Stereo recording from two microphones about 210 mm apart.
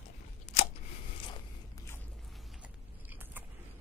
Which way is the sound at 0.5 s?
35° left (ahead or behind).